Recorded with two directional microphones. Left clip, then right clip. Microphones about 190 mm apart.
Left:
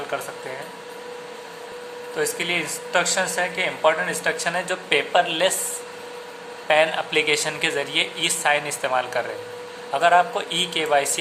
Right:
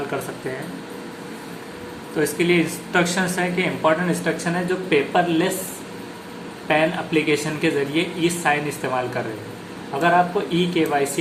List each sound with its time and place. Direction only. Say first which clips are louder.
2.1 s a woman's voice: right 4 dB; 15° left (ahead or behind)
6.7 s speech: left 1 dB; 25° left (ahead or behind)